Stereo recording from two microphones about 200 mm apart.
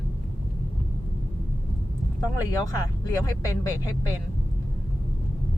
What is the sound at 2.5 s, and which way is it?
Speech, 20° left (ahead or behind).